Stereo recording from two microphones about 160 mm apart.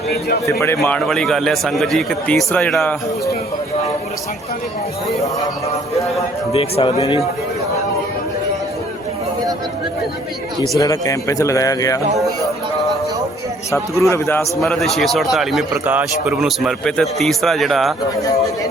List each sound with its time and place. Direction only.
0.4 s a man's voice: 15° left (ahead or behind)
0.8 s a man's voice: 5° left (ahead or behind)
6.5 s speech: 35° left (ahead or behind)
10.8 s a man's voice: 20° left (ahead or behind)
12.2 s music: centre (ahead or behind)
13.7 s a man's voice: 20° left (ahead or behind)
14.6 s a man's voice: centre (ahead or behind)